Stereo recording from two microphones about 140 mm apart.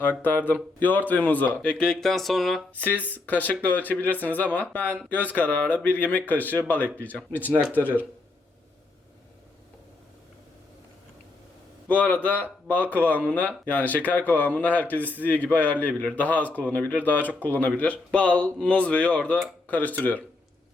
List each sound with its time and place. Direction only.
0.0 s speech: 15° left (ahead or behind)
2.7 s speech: 10° left (ahead or behind)
7.5 s speech: 10° right (ahead or behind)
7.8 s speech: 15° left (ahead or behind)
11.9 s speech: 10° left (ahead or behind)